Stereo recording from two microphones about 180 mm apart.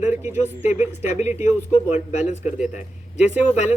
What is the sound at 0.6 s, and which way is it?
A man's voice, 40° left (ahead or behind).